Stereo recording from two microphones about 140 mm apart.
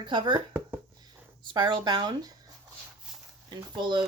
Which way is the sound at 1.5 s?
35° right (ahead or behind).